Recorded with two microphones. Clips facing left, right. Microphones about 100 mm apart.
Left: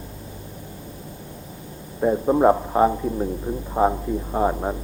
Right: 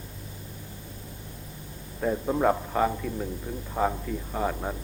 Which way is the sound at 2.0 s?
25° left (ahead or behind).